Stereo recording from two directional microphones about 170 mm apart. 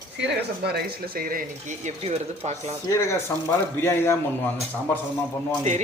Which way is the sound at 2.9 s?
15° left (ahead or behind).